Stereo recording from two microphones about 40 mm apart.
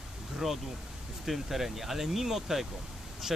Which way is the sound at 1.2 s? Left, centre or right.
Centre.